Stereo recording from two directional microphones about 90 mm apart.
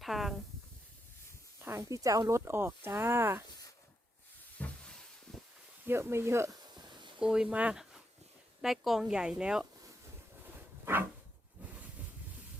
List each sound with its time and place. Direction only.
0.0 s speech: centre (ahead or behind)
1.6 s speech: 35° right (ahead or behind)
2.4 s speech: 25° right (ahead or behind)
4.5 s a sound: 10° left (ahead or behind)
5.8 s speech: 25° right (ahead or behind)
6.5 s a sound: 55° right (ahead or behind)
7.2 s speech: 10° right (ahead or behind)
8.6 s speech: centre (ahead or behind)
10.4 s dog: 25° right (ahead or behind)